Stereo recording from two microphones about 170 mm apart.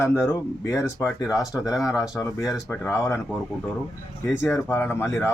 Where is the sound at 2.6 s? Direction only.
10° left (ahead or behind).